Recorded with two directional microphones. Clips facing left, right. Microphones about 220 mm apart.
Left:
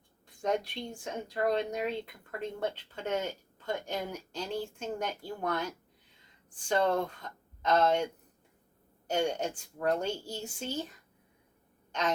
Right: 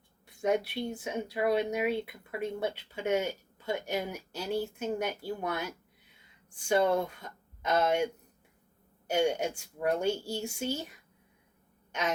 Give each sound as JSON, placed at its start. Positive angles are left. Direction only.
{"t": 0.3, "sound": "speech", "side_deg": -10}
{"t": 11.9, "sound": "throat clearing", "side_deg": -10}